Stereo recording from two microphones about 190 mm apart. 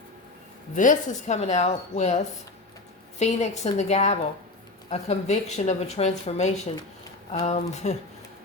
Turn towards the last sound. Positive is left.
turn(degrees=35)  # may be behind; listen again after turning